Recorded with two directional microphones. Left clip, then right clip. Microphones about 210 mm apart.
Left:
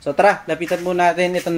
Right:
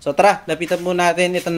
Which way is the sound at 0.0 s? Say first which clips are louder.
Right 1 dB; 10° right (ahead or behind).